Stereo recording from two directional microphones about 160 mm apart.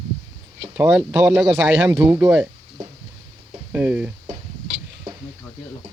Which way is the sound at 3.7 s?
10° right (ahead or behind).